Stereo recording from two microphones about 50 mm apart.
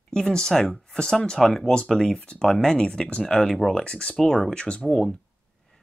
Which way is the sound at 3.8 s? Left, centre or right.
Centre.